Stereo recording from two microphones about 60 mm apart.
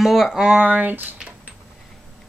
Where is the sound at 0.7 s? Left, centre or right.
Right.